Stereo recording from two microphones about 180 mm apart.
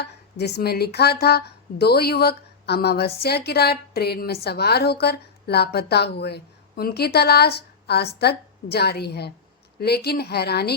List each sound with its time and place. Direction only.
0.0 s a woman's voice: 65° left (ahead or behind)